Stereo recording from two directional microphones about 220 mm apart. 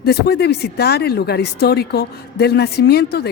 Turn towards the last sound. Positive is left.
turn(degrees=45)  # may be behind; listen again after turning